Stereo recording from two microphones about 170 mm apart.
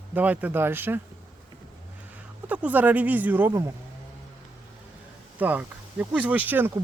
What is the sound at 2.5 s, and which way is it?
Speech, 10° right (ahead or behind).